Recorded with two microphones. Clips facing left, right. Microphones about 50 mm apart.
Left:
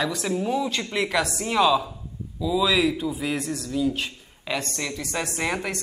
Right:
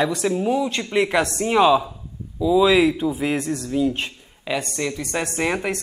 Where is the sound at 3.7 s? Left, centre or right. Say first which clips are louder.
Right 3 dB; centre.